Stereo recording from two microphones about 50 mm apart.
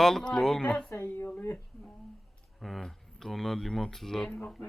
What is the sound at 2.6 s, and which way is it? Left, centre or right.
Speech, centre.